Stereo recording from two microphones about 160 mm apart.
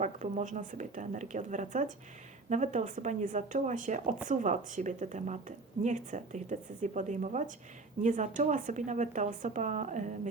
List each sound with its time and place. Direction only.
0.0 s a woman's voice: 50° right (ahead or behind)